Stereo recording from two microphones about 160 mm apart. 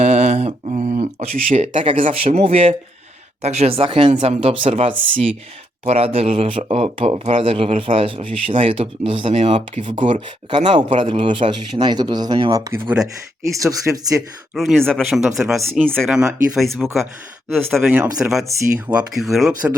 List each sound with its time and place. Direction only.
0.0 s a sound: 45° right (ahead or behind)
2.2 s speech: 40° right (ahead or behind); by 14.2 s 20° right (ahead or behind)
14.5 s speech: centre (ahead or behind)